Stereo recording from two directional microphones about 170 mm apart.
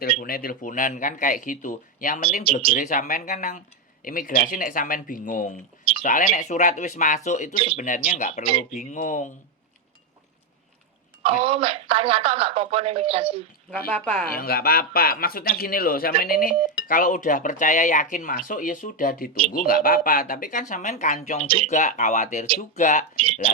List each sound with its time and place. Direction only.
0.0 s speech: 60° left (ahead or behind)
2.4 s speech: 30° right (ahead or behind)
2.7 s speech: 50° left (ahead or behind)
7.5 s speech: 30° right (ahead or behind)
7.8 s speech: 50° left (ahead or behind)
11.2 s speech: 30° right (ahead or behind)
13.7 s speech: 5° left (ahead or behind)
14.3 s speech: 65° left (ahead or behind); by 23.0 s 45° left (ahead or behind)
23.1 s speech: 30° right (ahead or behind)